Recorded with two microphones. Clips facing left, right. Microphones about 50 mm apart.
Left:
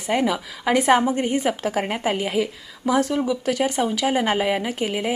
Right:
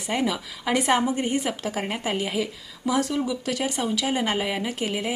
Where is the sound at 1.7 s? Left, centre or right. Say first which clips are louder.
Left 4 dB; left.